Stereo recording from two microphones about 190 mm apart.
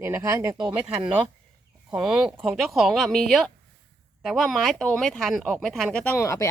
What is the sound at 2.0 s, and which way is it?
Speech, 5° right (ahead or behind).